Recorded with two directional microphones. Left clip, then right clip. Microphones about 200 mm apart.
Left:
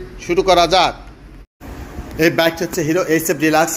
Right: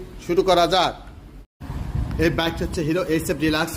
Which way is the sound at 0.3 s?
15° right (ahead or behind).